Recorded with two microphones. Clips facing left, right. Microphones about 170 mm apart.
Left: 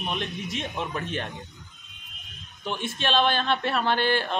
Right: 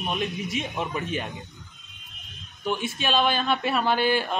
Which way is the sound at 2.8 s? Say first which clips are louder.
Left 1 dB; 5° right (ahead or behind).